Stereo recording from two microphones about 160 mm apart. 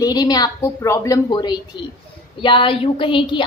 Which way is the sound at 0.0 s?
25° left (ahead or behind).